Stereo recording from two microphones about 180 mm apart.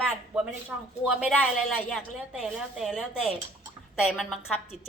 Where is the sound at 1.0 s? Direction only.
5° right (ahead or behind).